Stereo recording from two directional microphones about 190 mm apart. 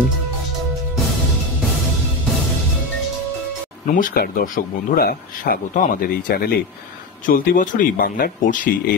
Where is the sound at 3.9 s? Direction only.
45° left (ahead or behind).